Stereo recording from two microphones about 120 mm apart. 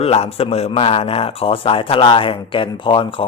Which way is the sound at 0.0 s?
55° left (ahead or behind).